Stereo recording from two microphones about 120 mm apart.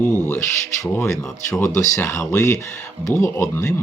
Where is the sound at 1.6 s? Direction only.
25° left (ahead or behind).